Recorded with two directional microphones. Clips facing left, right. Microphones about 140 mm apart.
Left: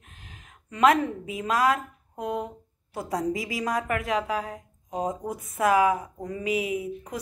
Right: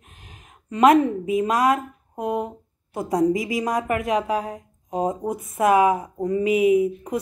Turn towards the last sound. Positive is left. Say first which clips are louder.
# right 12 dB
turn(degrees=-25)  # may be behind; listen again after turning